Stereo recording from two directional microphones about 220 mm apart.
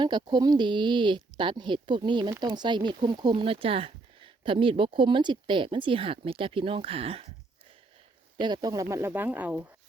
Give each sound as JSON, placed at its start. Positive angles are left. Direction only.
{"t": 0.0, "sound": "speech", "side_deg": -20}
{"t": 8.4, "sound": "speech", "side_deg": -20}